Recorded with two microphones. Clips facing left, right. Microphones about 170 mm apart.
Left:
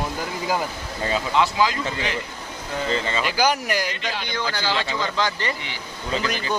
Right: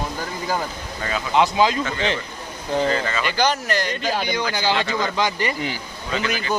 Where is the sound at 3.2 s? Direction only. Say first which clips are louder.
Even; 10° left (ahead or behind).